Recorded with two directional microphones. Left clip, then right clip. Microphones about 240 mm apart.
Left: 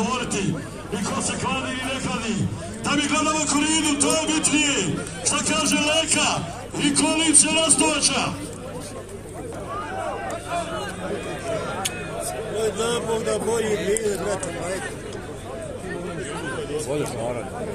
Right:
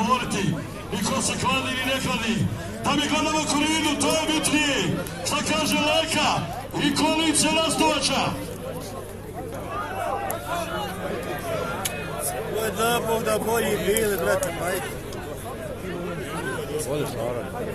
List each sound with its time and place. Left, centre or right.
0.0 s a sound: centre
0.9 s a man's voice: centre
12.5 s speech: right